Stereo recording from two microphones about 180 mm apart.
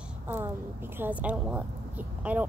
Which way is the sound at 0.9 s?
10° right (ahead or behind).